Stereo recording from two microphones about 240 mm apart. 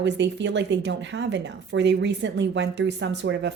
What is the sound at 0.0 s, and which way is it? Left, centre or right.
Speech, right.